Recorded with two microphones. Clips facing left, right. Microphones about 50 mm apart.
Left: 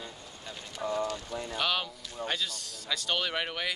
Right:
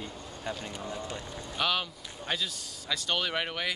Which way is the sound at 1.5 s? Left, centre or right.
Centre.